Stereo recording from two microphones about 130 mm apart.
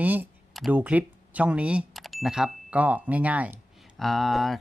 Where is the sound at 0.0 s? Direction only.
15° right (ahead or behind).